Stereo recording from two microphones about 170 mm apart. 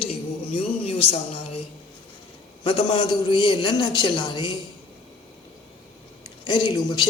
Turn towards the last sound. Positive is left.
turn(degrees=25)  # may be behind; listen again after turning